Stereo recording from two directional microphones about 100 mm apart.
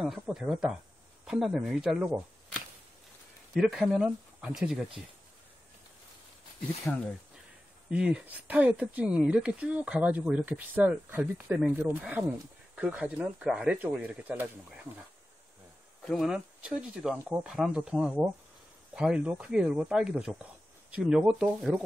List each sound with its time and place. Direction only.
0.0 s speech: 5° right (ahead or behind)
3.5 s speech: 5° right (ahead or behind)
7.9 s speech: 15° right (ahead or behind)
16.0 s speech: centre (ahead or behind)